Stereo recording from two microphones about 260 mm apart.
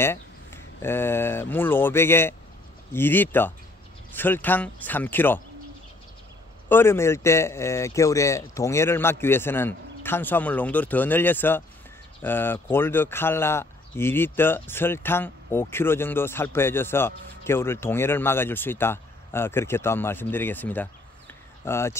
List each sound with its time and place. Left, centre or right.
0.0 s speech: centre
6.7 s speech: centre